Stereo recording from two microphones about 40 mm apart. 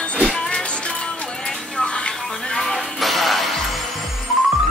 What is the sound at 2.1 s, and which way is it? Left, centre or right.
Music, centre.